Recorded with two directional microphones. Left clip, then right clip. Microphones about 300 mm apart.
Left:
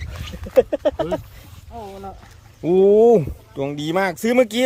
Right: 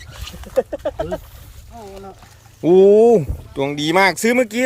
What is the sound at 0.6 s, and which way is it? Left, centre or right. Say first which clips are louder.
Speech: left 4 dB; left.